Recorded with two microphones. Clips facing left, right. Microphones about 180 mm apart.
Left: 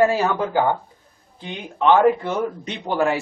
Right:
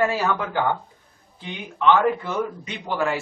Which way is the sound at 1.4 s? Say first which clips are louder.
Left 2 dB; 30° left (ahead or behind).